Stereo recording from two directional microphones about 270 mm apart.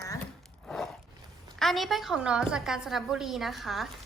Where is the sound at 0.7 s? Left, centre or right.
Centre.